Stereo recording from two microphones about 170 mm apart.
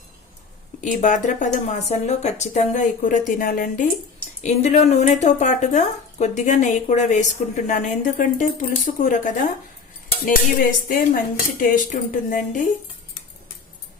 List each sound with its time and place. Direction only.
0.8 s speech: 45° left (ahead or behind)